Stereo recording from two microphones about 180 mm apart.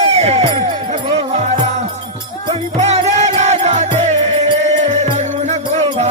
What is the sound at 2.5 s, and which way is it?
Music, 40° right (ahead or behind).